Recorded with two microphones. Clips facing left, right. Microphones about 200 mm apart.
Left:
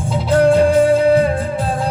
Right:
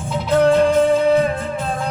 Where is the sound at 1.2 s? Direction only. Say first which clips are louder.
Left 3 dB; 35° left (ahead or behind).